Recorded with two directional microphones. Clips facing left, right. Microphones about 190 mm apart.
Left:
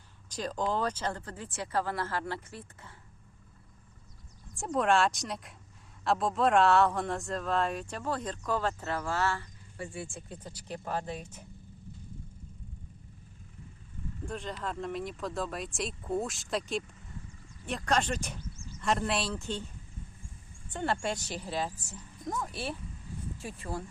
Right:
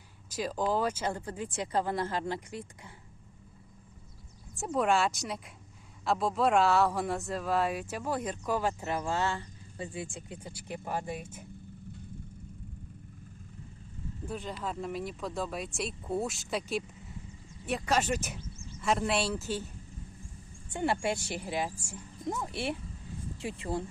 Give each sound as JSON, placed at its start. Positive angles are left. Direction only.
{"t": 0.3, "sound": "speech", "side_deg": -5}
{"t": 4.5, "sound": "speech", "side_deg": 0}
{"t": 14.3, "sound": "speech", "side_deg": -5}
{"t": 20.7, "sound": "speech", "side_deg": -10}